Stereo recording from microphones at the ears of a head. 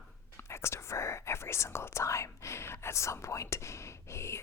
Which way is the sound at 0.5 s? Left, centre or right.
Left.